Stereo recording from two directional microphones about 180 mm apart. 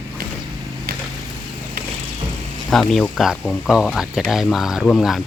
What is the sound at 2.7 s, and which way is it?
Speech, centre (ahead or behind).